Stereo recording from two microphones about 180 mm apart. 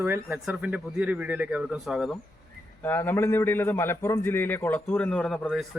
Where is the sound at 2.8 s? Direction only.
10° left (ahead or behind).